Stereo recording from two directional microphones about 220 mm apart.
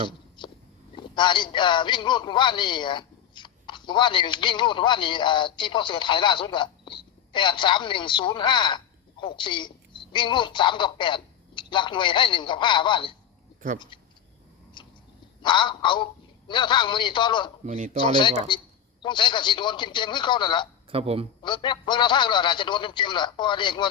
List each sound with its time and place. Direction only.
0.4 s a sound: 20° left (ahead or behind)
0.9 s a man's voice: 20° left (ahead or behind)
14.8 s a sound: 20° left (ahead or behind)
15.4 s a man's voice: 20° left (ahead or behind)
17.7 s speech: 30° right (ahead or behind)
18.0 s a man's voice: 20° left (ahead or behind)
20.9 s a man's voice: 25° right (ahead or behind)
21.4 s a man's voice: 20° left (ahead or behind)